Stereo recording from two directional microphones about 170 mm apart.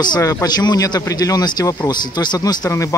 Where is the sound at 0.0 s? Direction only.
25° left (ahead or behind).